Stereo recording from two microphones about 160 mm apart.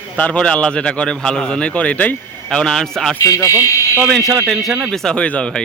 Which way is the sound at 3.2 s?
20° left (ahead or behind).